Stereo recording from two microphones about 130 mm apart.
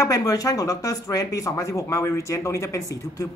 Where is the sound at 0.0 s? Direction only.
25° left (ahead or behind).